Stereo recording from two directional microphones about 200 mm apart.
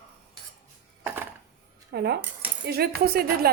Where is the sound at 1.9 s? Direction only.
55° right (ahead or behind).